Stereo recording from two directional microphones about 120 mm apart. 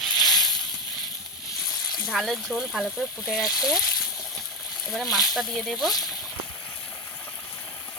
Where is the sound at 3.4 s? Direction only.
30° left (ahead or behind).